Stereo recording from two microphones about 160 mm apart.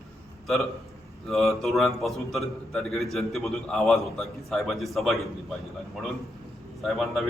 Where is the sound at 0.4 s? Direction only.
Centre (ahead or behind).